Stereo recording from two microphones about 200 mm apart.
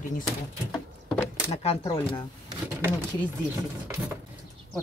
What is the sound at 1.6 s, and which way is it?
Speech, 25° left (ahead or behind).